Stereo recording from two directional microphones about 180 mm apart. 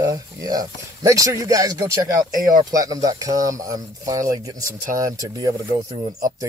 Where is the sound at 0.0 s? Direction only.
20° right (ahead or behind).